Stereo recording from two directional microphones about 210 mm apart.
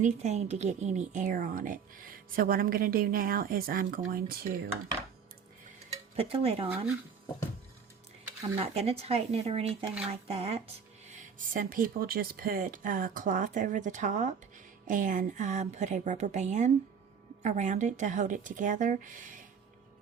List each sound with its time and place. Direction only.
0.0 s a woman's voice: 30° right (ahead or behind)
6.1 s speech: 25° right (ahead or behind)
8.5 s a woman's voice: 30° right (ahead or behind)